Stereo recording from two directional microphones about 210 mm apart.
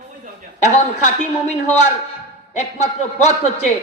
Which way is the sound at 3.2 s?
35° left (ahead or behind).